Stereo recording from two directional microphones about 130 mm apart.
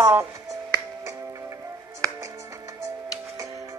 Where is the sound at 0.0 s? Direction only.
20° right (ahead or behind).